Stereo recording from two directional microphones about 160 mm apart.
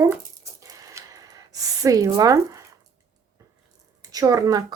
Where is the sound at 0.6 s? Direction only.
20° right (ahead or behind).